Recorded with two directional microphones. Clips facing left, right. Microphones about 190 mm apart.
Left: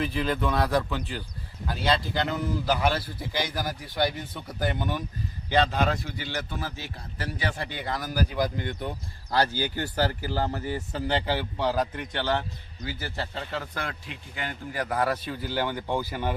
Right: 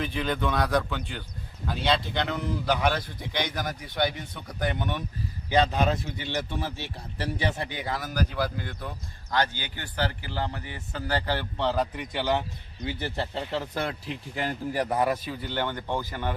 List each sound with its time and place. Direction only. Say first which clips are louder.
0.0 s speech: left 1 dB; centre (ahead or behind)
5.7 s speech: right 1 dB; 20° right (ahead or behind)
7.9 s speech: left 2 dB; centre (ahead or behind); by 11.0 s 40° left (ahead or behind)
11.0 s speech: left 1 dB; 20° left (ahead or behind)
11.3 s speech: even; 5° left (ahead or behind)
12.1 s a man's voice: right 1 dB; 10° right (ahead or behind)
12.8 s speech: right 3 dB; 25° right (ahead or behind)
13.5 s speech: right 3 dB; 30° right (ahead or behind)
14.9 s a man's voice: left 2 dB; 15° right (ahead or behind)
15.4 s speech: left 1 dB; 5° left (ahead or behind)